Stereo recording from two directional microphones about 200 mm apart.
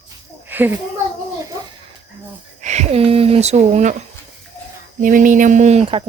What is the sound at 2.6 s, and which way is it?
Speech, 35° right (ahead or behind).